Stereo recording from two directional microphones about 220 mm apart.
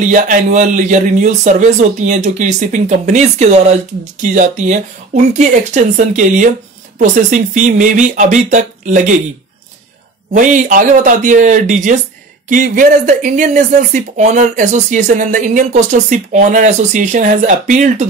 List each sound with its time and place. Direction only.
0.0 s speech: 35° right (ahead or behind)
10.3 s speech: 35° right (ahead or behind)